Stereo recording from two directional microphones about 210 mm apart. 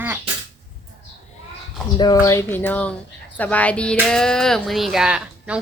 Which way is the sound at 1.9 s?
20° left (ahead or behind).